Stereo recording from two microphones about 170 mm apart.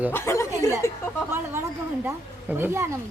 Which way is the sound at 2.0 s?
10° right (ahead or behind).